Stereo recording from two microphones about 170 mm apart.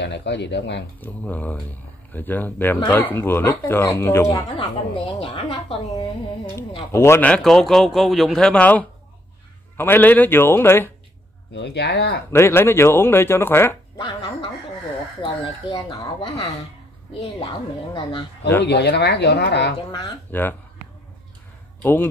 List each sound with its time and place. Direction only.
0.0 s speech: 90° left
1.0 s speech: 10° left (ahead or behind)
4.6 s a woman's voice: 30° left (ahead or behind)
6.9 s a man's voice: 15° left (ahead or behind)
11.5 s speech: 80° left
12.3 s speech: 15° left (ahead or behind)
13.9 s a sound: 30° left (ahead or behind)
15.2 s speech: 30° left (ahead or behind)
18.6 s speech: 80° left
20.2 s speech: 10° left (ahead or behind)
21.8 s speech: 10° left (ahead or behind)